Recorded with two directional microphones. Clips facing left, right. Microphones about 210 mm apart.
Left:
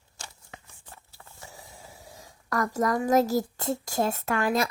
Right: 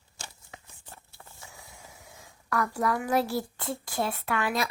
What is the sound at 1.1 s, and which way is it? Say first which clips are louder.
Speech: left 3 dB; 35° left (ahead or behind).